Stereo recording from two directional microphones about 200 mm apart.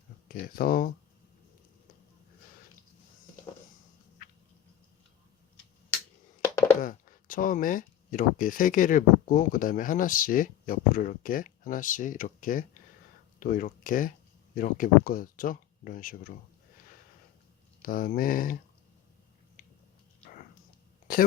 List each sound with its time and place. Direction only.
0.3 s speech: 45° left (ahead or behind)
6.8 s speech: 45° left (ahead or behind)
17.8 s speech: 45° left (ahead or behind)
19.6 s biting: 45° left (ahead or behind)